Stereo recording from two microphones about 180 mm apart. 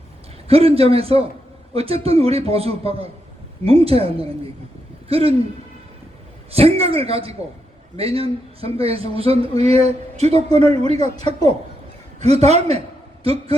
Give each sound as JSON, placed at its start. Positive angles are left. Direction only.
{"t": 0.4, "sound": "a man's voice", "side_deg": -35}
{"t": 6.5, "sound": "a man's voice", "side_deg": -35}
{"t": 12.2, "sound": "a man's voice", "side_deg": -35}